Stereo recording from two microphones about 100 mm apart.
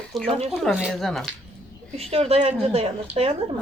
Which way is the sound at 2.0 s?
90° right.